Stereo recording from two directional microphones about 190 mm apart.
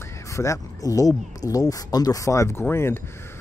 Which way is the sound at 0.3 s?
15° left (ahead or behind).